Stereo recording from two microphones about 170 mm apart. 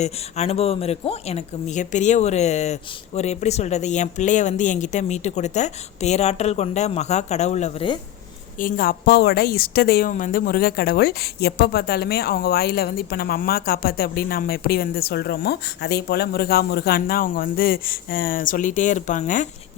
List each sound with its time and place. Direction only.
0.0 s a woman's voice: 40° left (ahead or behind)
8.5 s a woman's voice: 55° left (ahead or behind)